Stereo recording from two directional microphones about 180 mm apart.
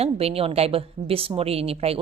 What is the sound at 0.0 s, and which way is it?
A woman's voice, 35° right (ahead or behind).